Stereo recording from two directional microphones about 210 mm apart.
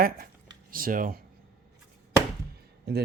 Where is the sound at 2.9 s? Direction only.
50° right (ahead or behind).